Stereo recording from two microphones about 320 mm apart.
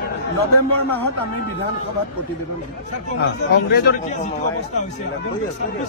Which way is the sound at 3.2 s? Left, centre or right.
Left.